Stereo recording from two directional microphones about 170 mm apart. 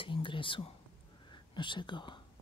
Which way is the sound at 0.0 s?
30° left (ahead or behind).